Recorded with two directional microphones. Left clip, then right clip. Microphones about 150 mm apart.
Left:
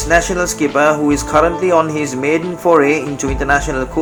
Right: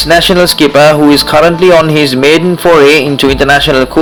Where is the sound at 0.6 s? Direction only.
45° right (ahead or behind).